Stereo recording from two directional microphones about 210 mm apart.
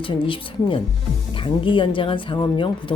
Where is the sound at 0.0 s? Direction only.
25° left (ahead or behind).